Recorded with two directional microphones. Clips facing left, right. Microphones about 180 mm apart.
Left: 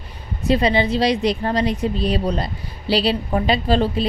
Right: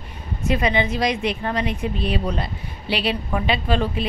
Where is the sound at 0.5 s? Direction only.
35° left (ahead or behind).